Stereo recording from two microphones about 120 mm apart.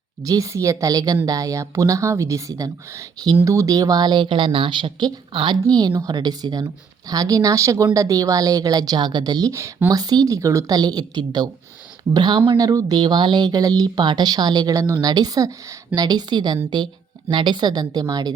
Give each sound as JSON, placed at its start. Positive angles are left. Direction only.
{"t": 0.3, "sound": "a woman's voice", "side_deg": -25}